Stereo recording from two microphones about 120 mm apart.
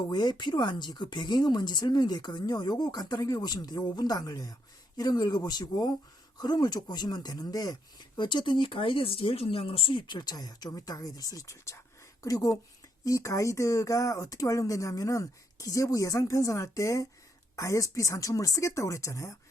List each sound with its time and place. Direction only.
0.1 s speech: 35° left (ahead or behind)